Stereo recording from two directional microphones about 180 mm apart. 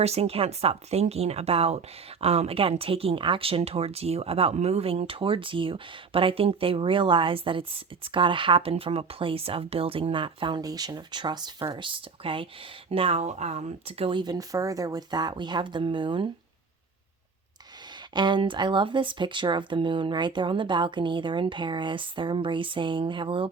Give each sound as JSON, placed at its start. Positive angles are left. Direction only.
{"t": 0.0, "sound": "speech", "side_deg": -35}
{"t": 18.1, "sound": "speech", "side_deg": -25}